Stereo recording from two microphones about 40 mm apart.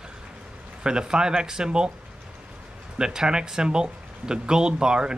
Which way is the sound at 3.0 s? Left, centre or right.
Centre.